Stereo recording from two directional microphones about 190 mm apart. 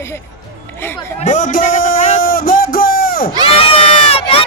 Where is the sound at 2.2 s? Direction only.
50° left (ahead or behind).